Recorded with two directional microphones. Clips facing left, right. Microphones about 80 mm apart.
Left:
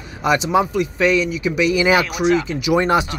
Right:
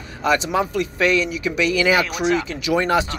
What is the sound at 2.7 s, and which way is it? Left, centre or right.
Speech, left.